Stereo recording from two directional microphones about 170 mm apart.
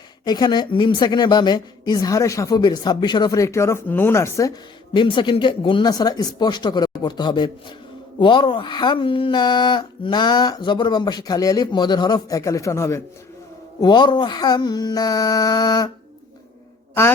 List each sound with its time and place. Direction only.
0.3 s speech: 25° left (ahead or behind)
4.9 s speech: 30° left (ahead or behind)